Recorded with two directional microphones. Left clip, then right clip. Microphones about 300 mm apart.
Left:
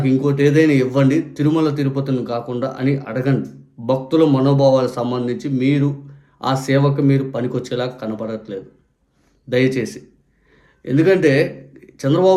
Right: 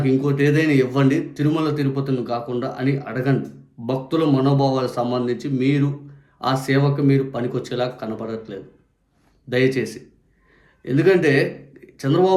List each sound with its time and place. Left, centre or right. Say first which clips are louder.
0.0 s a man's voice: left 3 dB; centre